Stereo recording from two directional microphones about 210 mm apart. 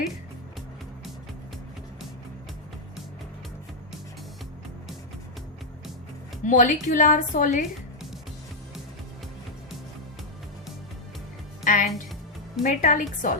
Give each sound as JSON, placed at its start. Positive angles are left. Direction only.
{"t": 6.4, "sound": "a woman's voice", "side_deg": 35}
{"t": 11.6, "sound": "music", "side_deg": 35}
{"t": 12.6, "sound": "a woman's voice", "side_deg": 40}